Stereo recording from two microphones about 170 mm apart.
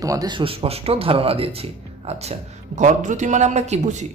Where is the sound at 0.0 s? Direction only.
20° right (ahead or behind).